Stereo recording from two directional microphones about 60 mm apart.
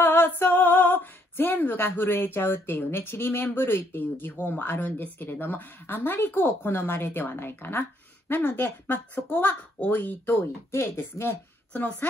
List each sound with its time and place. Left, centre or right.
0.0 s speech: left
10.7 s speech: left
11.7 s a woman's voice: left